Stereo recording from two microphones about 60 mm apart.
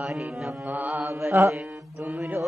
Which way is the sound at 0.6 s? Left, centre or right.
Right.